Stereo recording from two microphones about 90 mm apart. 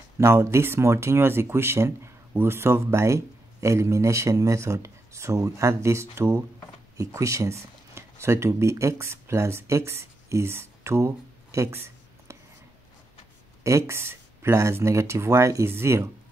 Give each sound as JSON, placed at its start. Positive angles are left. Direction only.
{"t": 0.2, "sound": "speech", "side_deg": -30}
{"t": 13.7, "sound": "speech", "side_deg": -30}